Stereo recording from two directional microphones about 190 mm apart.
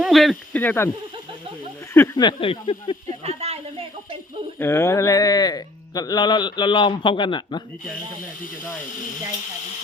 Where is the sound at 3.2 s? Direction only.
35° right (ahead or behind).